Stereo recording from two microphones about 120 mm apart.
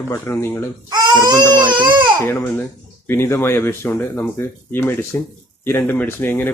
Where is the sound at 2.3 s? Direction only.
15° left (ahead or behind).